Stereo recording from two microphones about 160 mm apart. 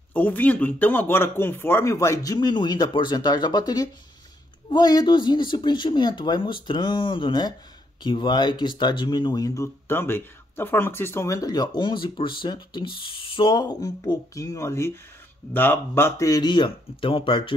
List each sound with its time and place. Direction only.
0.1 s speech: 10° left (ahead or behind); by 17.6 s 30° left (ahead or behind)